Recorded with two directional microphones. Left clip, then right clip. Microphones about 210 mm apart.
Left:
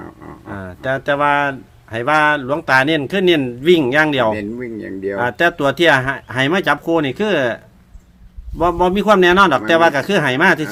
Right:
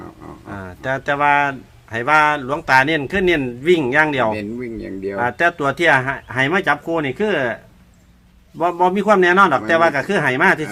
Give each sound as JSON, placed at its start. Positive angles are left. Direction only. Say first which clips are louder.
{"t": 0.5, "sound": "speech", "louder": "left 2 dB", "side_deg": 35}
{"t": 4.4, "sound": "speech", "louder": "left 2 dB", "side_deg": -5}
{"t": 5.1, "sound": "speech", "louder": "left 1 dB", "side_deg": 40}